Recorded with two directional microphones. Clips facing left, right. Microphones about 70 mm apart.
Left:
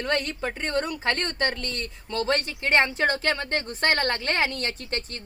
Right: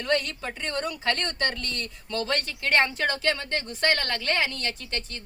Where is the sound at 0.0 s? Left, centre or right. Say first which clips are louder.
Even; left.